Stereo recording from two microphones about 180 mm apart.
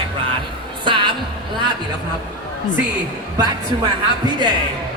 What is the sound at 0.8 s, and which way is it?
Music, 25° right (ahead or behind).